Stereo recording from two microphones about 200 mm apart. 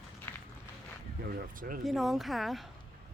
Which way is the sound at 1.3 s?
45° right (ahead or behind).